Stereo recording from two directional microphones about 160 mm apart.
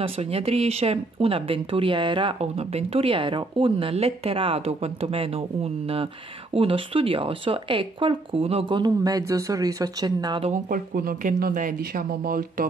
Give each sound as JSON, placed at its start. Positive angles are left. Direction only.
{"t": 0.0, "sound": "speech", "side_deg": -35}
{"t": 10.5, "sound": "speech", "side_deg": -60}